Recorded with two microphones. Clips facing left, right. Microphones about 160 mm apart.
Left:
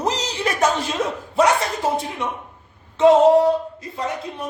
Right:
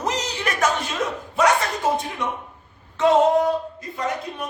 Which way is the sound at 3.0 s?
25° left (ahead or behind).